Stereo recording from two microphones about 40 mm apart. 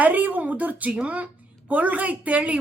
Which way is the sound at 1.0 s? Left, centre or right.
Right.